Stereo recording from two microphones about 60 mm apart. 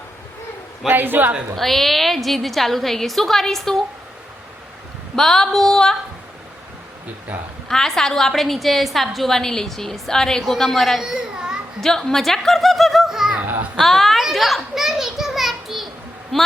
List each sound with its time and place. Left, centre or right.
0.9 s a man's voice: right
1.5 s a woman's voice: centre
5.1 s a sound: centre
7.7 s a woman's voice: centre
11.0 s a child's voice: centre
11.8 s a child's voice: centre
13.7 s children playing: centre
16.3 s a woman's voice: centre